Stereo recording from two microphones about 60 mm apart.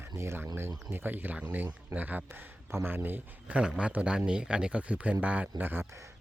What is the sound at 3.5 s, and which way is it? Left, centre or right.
A man's voice, centre.